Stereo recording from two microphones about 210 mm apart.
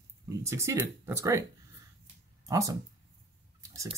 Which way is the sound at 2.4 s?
15° right (ahead or behind).